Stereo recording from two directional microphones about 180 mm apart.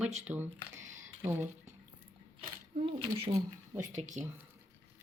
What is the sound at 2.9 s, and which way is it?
Speech, 30° right (ahead or behind).